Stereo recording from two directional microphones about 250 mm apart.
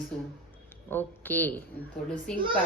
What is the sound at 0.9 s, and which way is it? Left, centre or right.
A woman's voice, centre.